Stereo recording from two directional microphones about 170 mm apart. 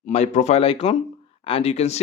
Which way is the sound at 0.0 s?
40° left (ahead or behind).